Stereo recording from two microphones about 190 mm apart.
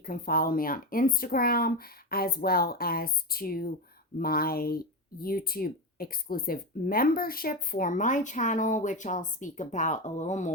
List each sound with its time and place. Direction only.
0.0 s speech: 50° left (ahead or behind)